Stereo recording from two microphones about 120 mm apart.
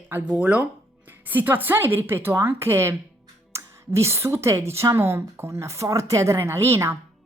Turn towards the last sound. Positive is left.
turn(degrees=-25)  # may be behind; listen again after turning